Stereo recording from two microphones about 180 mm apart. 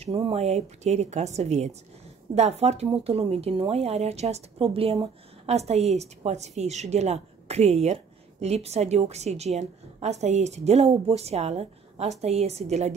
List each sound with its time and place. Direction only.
0.0 s a woman's voice: 30° right (ahead or behind)